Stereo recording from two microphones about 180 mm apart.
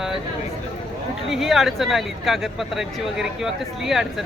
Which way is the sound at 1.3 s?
Centre (ahead or behind).